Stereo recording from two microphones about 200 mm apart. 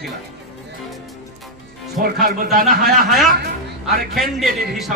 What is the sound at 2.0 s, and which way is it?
Speech, 45° right (ahead or behind).